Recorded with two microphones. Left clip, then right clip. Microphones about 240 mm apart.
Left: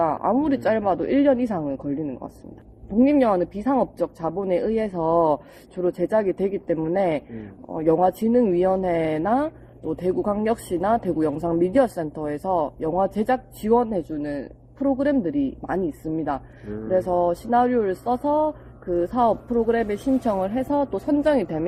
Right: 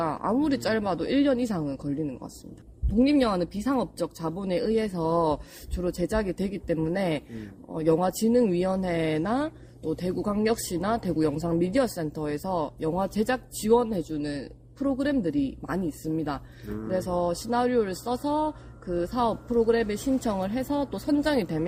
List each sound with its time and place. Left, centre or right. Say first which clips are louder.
0.0 s speech: left 5 dB; right